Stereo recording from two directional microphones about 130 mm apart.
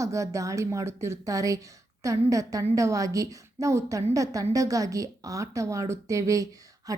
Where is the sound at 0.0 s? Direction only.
25° right (ahead or behind).